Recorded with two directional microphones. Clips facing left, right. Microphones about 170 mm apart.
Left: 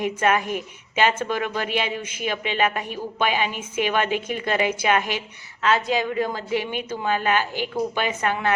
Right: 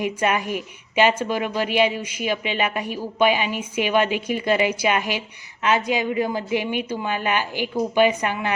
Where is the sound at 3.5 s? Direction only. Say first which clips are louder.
Right 3 dB; 45° left (ahead or behind).